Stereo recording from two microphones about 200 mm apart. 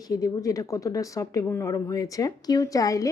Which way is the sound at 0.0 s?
15° left (ahead or behind).